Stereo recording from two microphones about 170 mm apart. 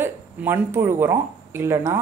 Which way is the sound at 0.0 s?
15° right (ahead or behind).